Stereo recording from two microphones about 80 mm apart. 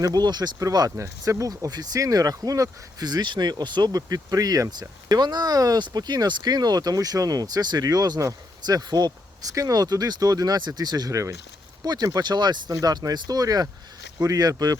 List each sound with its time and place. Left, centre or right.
0.0 s speech: right
0.9 s speech: right
11.1 s speech: right
11.9 s speech: right